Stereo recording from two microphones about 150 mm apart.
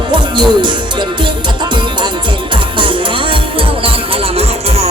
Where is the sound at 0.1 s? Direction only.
30° right (ahead or behind).